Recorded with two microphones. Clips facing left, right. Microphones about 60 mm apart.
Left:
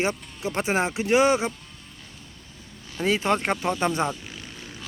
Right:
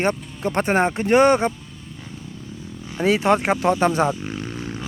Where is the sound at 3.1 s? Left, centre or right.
Centre.